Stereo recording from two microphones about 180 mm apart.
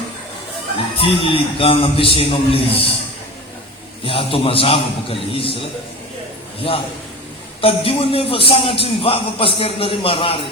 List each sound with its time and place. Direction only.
0.9 s a man's voice: 30° left (ahead or behind)
4.0 s a man's voice: 30° left (ahead or behind)